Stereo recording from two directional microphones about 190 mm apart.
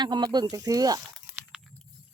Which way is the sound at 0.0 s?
20° right (ahead or behind).